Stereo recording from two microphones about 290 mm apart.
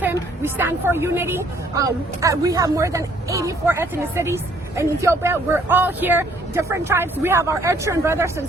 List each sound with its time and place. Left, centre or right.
0.0 s a woman's voice: centre